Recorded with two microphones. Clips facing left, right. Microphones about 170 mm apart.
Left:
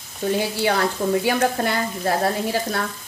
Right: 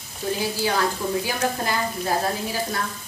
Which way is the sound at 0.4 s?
65° left (ahead or behind).